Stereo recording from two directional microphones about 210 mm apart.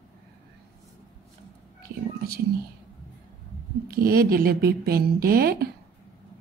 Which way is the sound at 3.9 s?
45° right (ahead or behind).